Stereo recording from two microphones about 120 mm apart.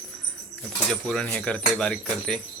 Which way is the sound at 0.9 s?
5° left (ahead or behind).